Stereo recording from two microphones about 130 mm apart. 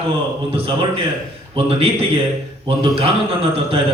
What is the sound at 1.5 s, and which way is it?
A man's voice, 45° right (ahead or behind).